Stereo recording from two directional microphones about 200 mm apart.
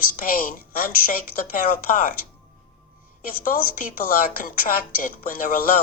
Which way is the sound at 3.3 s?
45° left (ahead or behind).